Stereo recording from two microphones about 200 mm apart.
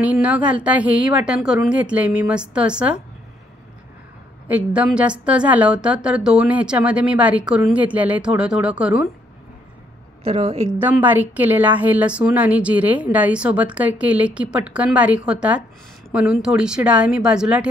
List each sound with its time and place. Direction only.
0.0 s a woman's voice: 5° right (ahead or behind)
4.5 s a woman's voice: 5° right (ahead or behind)
10.2 s a woman's voice: 30° right (ahead or behind)
10.7 s a woman's voice: 10° right (ahead or behind)